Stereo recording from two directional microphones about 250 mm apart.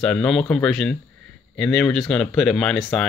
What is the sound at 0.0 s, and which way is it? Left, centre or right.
Speech, centre.